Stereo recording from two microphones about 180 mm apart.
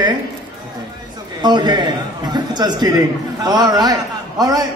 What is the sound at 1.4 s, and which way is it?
A man's voice, 25° right (ahead or behind).